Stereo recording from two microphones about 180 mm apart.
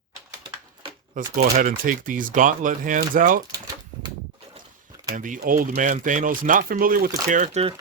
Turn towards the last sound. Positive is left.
turn(degrees=-35)  # may be behind; listen again after turning